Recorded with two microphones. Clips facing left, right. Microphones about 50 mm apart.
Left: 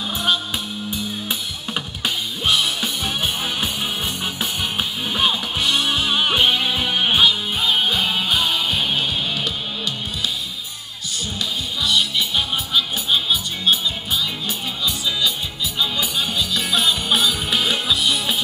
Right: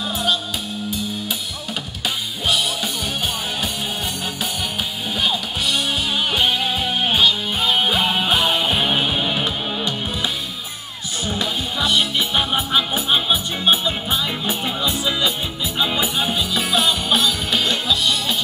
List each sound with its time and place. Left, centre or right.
5.1 s music: left
7.6 s music: centre
11.3 s music: right
16.7 s music: centre